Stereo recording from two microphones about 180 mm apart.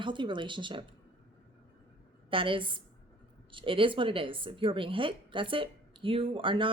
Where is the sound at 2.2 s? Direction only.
30° right (ahead or behind).